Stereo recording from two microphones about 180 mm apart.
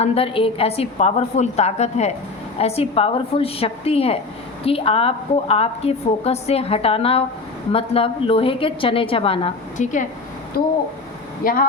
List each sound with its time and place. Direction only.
0.0 s a woman's voice: 30° left (ahead or behind)
10.5 s speech: 55° left (ahead or behind)